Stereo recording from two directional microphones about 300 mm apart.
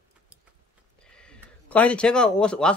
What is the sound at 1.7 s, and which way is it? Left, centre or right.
A man's voice, centre.